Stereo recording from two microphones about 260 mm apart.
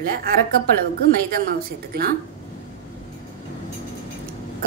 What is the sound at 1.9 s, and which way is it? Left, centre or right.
Speech, right.